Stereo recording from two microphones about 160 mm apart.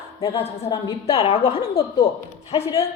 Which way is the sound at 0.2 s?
40° left (ahead or behind).